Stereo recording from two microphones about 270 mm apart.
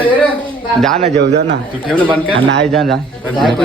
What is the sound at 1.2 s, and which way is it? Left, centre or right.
Speech, right.